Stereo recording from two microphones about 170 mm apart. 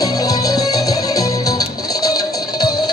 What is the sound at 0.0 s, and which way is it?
Music, 20° left (ahead or behind).